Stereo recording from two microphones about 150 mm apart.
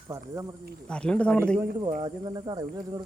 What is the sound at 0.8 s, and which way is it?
Speech, 5° left (ahead or behind).